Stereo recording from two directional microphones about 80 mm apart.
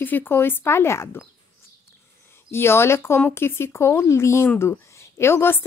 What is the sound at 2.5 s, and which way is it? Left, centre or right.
A woman's voice, left.